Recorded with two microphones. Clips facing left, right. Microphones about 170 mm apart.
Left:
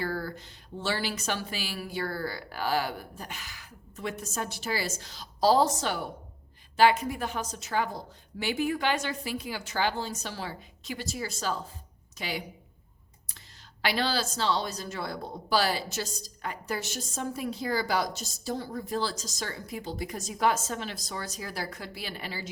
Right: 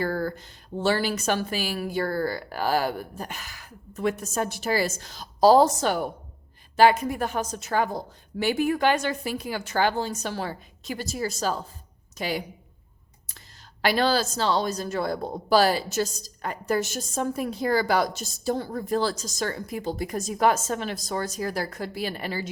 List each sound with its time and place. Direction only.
0.0 s a woman's voice: 50° right (ahead or behind)
13.8 s a woman's voice: 45° right (ahead or behind)